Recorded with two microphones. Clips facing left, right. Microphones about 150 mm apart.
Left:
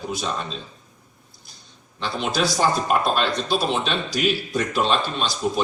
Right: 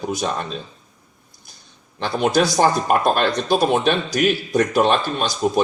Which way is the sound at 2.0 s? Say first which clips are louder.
Right 6 dB; 50° right (ahead or behind).